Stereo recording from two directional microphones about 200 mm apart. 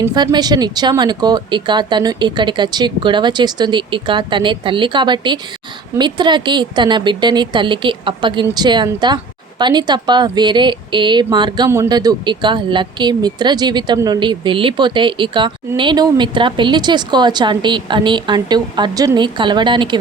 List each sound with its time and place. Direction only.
0.0 s a woman's voice: 20° right (ahead or behind)